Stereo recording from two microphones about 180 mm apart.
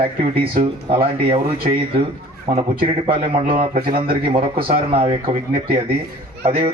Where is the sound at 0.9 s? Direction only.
30° right (ahead or behind).